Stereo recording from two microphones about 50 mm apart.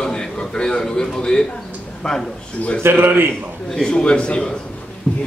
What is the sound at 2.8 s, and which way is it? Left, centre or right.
Speech, right.